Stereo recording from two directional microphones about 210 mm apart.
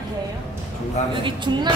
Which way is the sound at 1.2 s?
20° right (ahead or behind).